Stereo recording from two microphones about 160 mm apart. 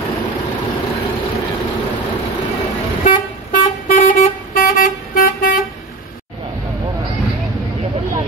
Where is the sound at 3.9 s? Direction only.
55° left (ahead or behind).